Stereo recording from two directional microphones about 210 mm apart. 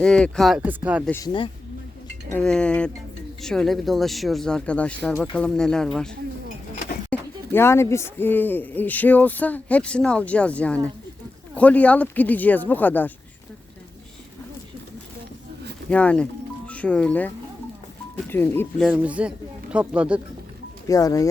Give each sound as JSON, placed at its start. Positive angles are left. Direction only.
{"t": 0.0, "sound": "speech", "side_deg": 5}
{"t": 1.0, "sound": "speech", "side_deg": 10}
{"t": 2.3, "sound": "speech", "side_deg": 5}
{"t": 7.1, "sound": "a sound", "side_deg": 5}
{"t": 7.5, "sound": "speech", "side_deg": 10}
{"t": 15.9, "sound": "speech", "side_deg": 5}
{"t": 18.9, "sound": "speech", "side_deg": -5}
{"t": 20.8, "sound": "speech", "side_deg": 15}